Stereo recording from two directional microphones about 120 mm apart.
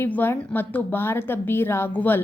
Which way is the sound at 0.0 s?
15° left (ahead or behind).